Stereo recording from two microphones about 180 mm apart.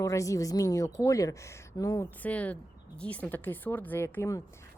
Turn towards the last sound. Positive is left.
turn(degrees=15)  # may be behind; listen again after turning